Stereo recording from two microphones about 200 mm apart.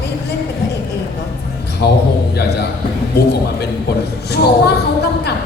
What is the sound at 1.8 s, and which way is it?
Speech, 55° left (ahead or behind).